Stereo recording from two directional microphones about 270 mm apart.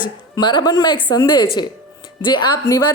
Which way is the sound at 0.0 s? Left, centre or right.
Centre.